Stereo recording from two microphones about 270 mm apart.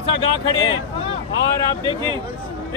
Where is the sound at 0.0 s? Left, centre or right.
Centre.